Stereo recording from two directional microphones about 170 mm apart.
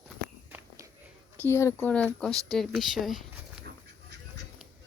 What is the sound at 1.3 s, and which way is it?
Speech, 15° left (ahead or behind).